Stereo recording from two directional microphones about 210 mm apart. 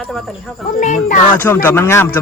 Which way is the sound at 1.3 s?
10° left (ahead or behind).